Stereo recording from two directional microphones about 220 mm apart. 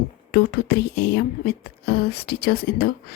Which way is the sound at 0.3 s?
45° left (ahead or behind).